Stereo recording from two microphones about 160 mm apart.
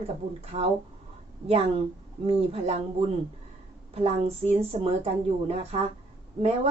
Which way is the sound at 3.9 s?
40° right (ahead or behind).